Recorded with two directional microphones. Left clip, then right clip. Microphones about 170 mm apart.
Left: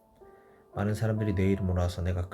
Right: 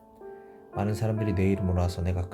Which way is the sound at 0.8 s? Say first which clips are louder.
Right 2 dB; 10° right (ahead or behind).